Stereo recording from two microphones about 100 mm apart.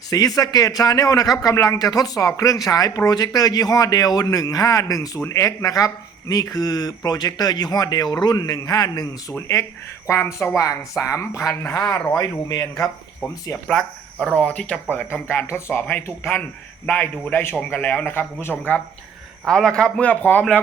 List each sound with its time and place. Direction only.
0.1 s a man's voice: 40° left (ahead or behind)
10.1 s a man's voice: 30° left (ahead or behind)
13.7 s a man's voice: 5° left (ahead or behind); by 18.5 s 20° left (ahead or behind)
19.5 s a man's voice: 5° left (ahead or behind)